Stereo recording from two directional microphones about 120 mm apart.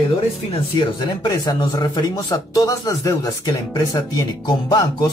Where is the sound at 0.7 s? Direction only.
35° left (ahead or behind).